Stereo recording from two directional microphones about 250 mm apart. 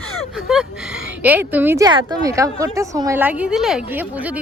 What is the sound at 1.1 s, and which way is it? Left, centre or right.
A woman's voice, centre.